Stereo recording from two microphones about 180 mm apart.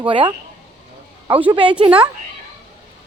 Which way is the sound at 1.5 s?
30° right (ahead or behind).